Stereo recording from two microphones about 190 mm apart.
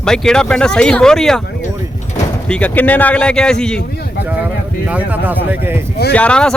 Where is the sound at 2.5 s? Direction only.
5° left (ahead or behind).